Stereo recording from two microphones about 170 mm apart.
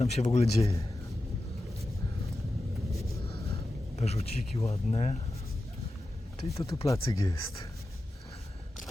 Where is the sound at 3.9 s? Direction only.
40° left (ahead or behind).